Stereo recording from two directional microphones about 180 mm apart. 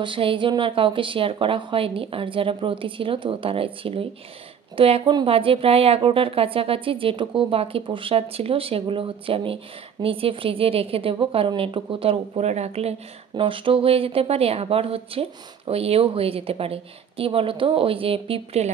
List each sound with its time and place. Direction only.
0.0 s a woman's voice: 30° right (ahead or behind)